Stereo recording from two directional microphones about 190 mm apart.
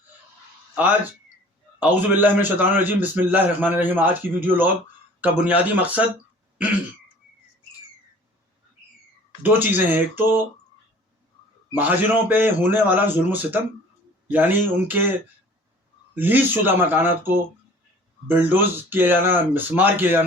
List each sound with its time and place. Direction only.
1.8 s a man's voice: 10° right (ahead or behind)
9.4 s a man's voice: 10° right (ahead or behind)
11.7 s a man's voice: 10° right (ahead or behind)
16.1 s a man's voice: 10° right (ahead or behind)